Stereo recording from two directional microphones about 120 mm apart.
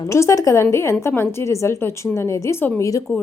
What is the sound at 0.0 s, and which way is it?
A woman's voice, 25° left (ahead or behind).